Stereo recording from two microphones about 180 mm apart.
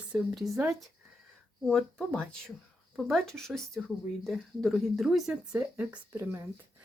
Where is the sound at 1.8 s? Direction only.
5° left (ahead or behind).